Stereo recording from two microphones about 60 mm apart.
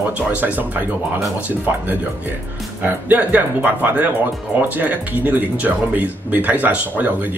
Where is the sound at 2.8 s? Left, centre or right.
Right.